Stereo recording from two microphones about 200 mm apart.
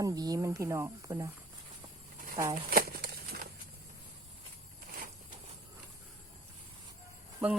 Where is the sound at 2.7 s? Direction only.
50° right (ahead or behind).